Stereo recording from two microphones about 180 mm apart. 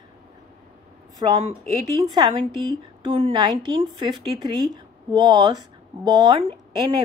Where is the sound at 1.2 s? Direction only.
25° right (ahead or behind).